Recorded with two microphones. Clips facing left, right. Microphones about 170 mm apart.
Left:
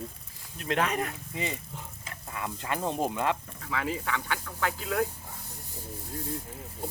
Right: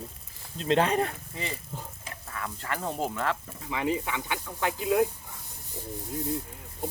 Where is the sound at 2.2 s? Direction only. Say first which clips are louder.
Left 1 dB; 15° left (ahead or behind).